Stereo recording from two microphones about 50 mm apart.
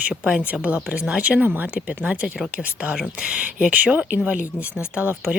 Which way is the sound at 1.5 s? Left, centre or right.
Right.